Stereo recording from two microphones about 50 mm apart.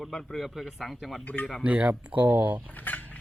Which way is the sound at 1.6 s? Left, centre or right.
Right.